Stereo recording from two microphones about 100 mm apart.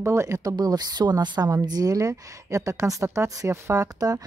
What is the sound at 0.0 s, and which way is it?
A woman's voice, 30° right (ahead or behind).